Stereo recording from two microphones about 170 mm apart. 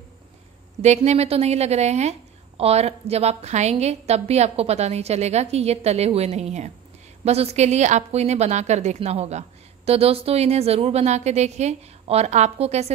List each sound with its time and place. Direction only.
0.8 s a woman's voice: 40° right (ahead or behind)